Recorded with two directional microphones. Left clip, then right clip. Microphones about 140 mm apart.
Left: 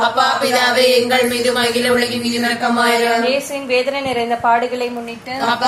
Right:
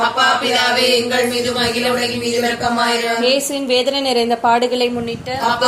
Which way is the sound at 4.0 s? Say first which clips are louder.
Right 2 dB; 90° right.